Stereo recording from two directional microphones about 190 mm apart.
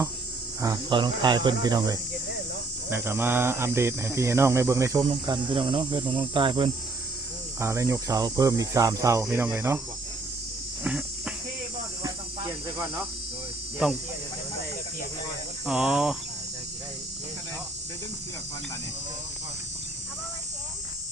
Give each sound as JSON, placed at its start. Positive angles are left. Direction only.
{"t": 0.6, "sound": "speech", "side_deg": -20}
{"t": 7.6, "sound": "speech", "side_deg": -15}
{"t": 10.8, "sound": "insect", "side_deg": -5}
{"t": 13.8, "sound": "cricket", "side_deg": -5}
{"t": 15.6, "sound": "cricket", "side_deg": -5}